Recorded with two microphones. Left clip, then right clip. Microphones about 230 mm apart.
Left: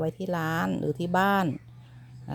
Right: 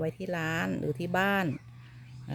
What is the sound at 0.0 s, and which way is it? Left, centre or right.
Speech, centre.